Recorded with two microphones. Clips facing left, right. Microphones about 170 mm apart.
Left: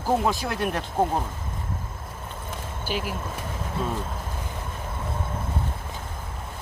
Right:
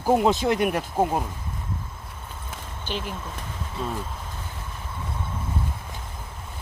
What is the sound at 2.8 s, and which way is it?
Speech, 10° left (ahead or behind).